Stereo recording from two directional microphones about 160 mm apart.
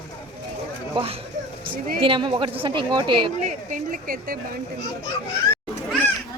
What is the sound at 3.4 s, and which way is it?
Speech, 55° right (ahead or behind).